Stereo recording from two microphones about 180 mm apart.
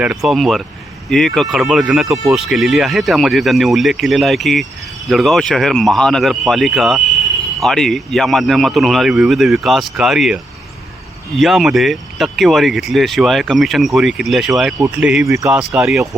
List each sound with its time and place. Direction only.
0.0 s speech: 5° right (ahead or behind)
15.3 s speech: 15° right (ahead or behind)
15.7 s speech: centre (ahead or behind)